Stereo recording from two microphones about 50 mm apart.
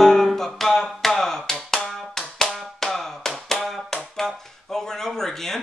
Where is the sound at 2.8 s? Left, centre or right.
Centre.